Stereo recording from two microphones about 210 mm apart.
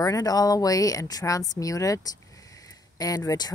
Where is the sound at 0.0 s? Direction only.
15° left (ahead or behind).